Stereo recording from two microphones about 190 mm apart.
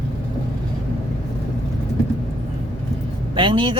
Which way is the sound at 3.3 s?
25° right (ahead or behind).